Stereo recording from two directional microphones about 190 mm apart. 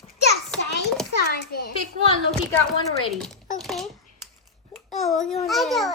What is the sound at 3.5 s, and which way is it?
Speech, centre (ahead or behind).